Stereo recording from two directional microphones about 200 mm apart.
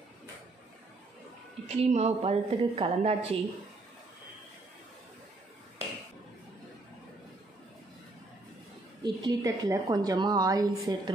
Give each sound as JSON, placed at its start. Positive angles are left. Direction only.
{"t": 1.7, "sound": "a woman's voice", "side_deg": -30}
{"t": 9.0, "sound": "a woman's voice", "side_deg": -20}